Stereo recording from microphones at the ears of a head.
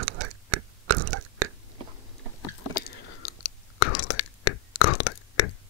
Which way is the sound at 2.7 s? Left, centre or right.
Left.